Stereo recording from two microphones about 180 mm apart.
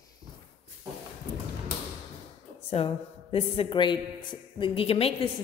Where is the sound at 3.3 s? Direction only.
30° left (ahead or behind).